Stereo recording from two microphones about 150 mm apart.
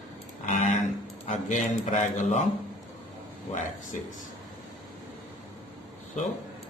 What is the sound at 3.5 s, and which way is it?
Speech, 55° left (ahead or behind).